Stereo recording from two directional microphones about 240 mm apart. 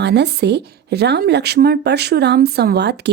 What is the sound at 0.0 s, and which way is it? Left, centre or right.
Speech, right.